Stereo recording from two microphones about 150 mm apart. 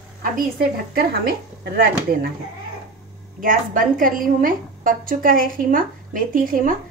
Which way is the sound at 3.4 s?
65° right (ahead or behind).